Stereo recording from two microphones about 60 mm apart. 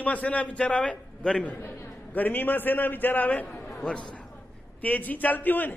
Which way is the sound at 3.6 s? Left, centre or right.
Centre.